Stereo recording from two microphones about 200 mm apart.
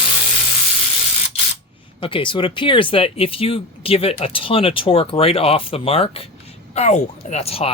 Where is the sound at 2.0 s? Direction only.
25° left (ahead or behind).